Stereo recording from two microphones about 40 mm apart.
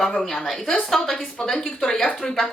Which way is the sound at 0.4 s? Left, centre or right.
Centre.